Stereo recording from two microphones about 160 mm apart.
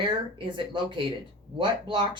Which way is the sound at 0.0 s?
30° right (ahead or behind).